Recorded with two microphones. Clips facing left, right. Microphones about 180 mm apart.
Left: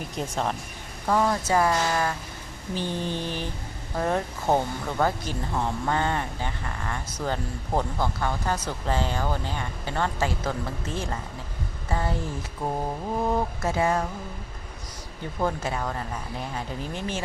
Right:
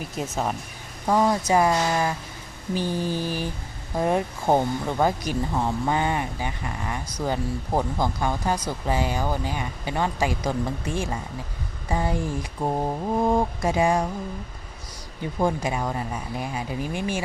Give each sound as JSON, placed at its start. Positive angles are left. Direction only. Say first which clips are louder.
{"t": 0.2, "sound": "speech", "louder": "right 1 dB", "side_deg": -5}
{"t": 15.4, "sound": "speech", "louder": "right 3 dB", "side_deg": -15}